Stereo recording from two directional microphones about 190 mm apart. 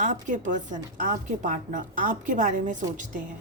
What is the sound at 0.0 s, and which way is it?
A woman's voice, 45° right (ahead or behind).